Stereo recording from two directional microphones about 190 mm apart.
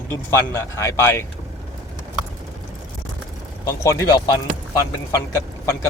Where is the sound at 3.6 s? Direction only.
15° left (ahead or behind).